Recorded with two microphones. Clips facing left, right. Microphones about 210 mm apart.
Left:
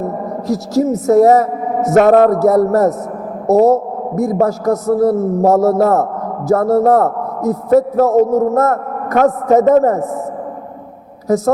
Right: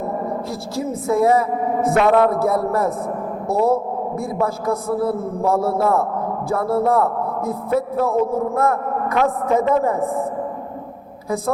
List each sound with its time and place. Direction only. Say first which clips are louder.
0.4 s a man's voice: left 10 dB; 40° left (ahead or behind)
11.3 s a woman's voice: left 9 dB; 40° left (ahead or behind)